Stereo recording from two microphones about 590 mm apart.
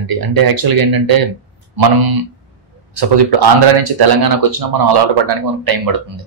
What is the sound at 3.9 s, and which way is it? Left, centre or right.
Speech, right.